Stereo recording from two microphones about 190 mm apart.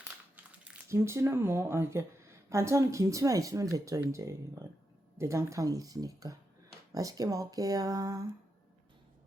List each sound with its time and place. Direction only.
0.7 s speech: 15° right (ahead or behind)